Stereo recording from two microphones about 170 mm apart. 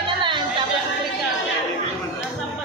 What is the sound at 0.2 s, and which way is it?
Chatter, 25° right (ahead or behind).